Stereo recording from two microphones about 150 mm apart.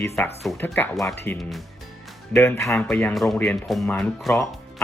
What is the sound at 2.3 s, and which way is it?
Speech, 15° left (ahead or behind).